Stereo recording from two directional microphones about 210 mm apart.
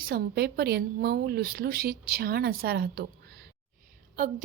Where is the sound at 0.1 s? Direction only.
50° right (ahead or behind).